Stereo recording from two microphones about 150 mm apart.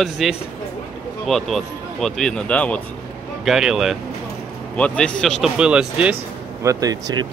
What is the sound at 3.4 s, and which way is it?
Speech, 5° right (ahead or behind).